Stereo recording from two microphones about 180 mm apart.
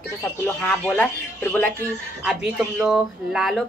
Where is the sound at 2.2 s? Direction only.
5° right (ahead or behind).